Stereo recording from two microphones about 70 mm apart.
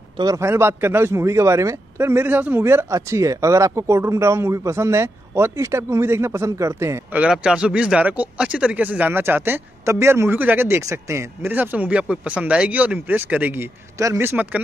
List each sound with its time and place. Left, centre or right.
0.4 s a man's voice: right
2.6 s speech: right
7.2 s a man's voice: centre
9.1 s a man's voice: right
10.8 s speech: right
11.4 s speech: right
13.9 s speech: right
14.3 s speech: right